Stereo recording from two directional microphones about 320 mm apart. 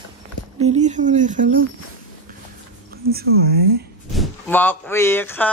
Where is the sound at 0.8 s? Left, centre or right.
Right.